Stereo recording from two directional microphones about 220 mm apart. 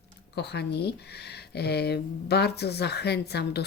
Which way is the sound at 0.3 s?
50° left (ahead or behind).